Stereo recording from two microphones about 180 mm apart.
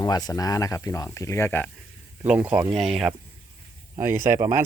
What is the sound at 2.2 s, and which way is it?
Speech, 5° right (ahead or behind).